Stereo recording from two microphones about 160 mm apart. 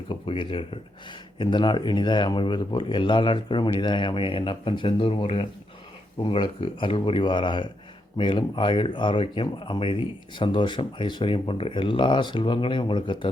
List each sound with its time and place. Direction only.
0.1 s speech: 30° left (ahead or behind)